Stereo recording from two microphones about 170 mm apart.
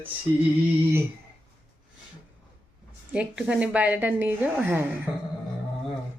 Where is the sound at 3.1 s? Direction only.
5° right (ahead or behind).